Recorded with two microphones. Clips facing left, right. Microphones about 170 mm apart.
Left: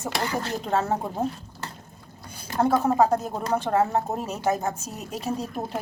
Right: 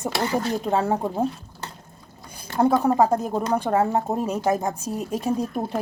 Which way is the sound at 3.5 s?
15° right (ahead or behind).